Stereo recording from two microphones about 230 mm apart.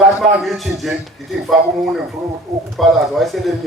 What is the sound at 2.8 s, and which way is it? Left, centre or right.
Speech, centre.